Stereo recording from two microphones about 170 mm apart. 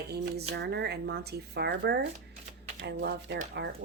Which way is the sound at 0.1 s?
80° right.